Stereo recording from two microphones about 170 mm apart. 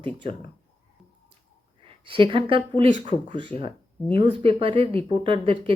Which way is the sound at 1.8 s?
30° right (ahead or behind).